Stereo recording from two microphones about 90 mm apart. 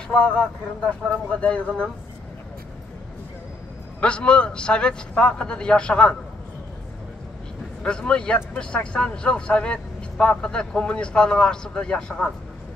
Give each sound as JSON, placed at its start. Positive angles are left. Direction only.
{"t": 0.1, "sound": "speech", "side_deg": 10}
{"t": 4.0, "sound": "speech", "side_deg": 10}
{"t": 7.8, "sound": "speech", "side_deg": 10}